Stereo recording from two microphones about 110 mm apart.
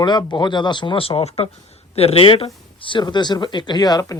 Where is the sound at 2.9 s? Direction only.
45° left (ahead or behind).